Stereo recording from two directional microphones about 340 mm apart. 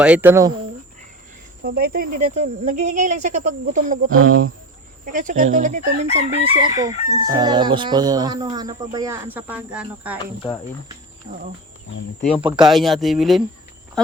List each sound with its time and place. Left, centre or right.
0.0 s speech: centre
1.6 s speech: right
5.1 s chicken: right; by 10.2 s centre
12.4 s chicken: centre
12.6 s speech: centre